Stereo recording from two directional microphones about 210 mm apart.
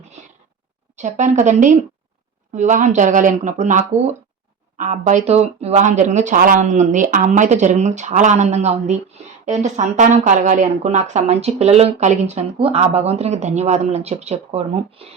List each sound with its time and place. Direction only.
0.9 s speech: 35° right (ahead or behind)